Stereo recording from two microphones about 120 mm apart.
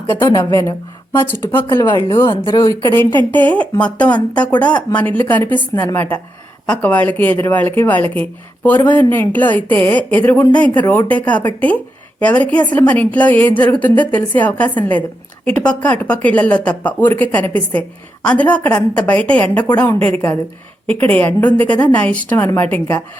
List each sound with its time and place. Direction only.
0.1 s a woman's voice: 25° left (ahead or behind)